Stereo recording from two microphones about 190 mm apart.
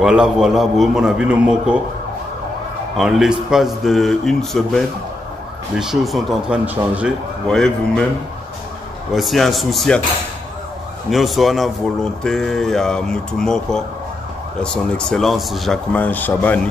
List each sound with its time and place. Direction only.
0.0 s speech: 5° right (ahead or behind)
3.0 s speech: centre (ahead or behind)
7.4 s speech: 5° left (ahead or behind)
9.1 s speech: centre (ahead or behind)
11.1 s speech: centre (ahead or behind)